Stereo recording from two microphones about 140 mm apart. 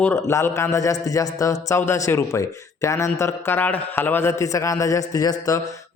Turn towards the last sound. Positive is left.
turn(degrees=25)  # may be behind; listen again after turning